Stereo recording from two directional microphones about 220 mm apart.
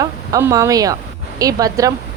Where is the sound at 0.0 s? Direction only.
15° right (ahead or behind).